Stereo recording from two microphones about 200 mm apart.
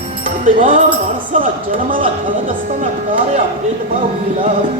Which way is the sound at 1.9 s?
40° right (ahead or behind).